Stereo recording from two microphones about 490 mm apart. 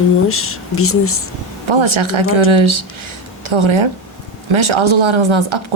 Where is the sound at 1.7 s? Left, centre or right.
Right.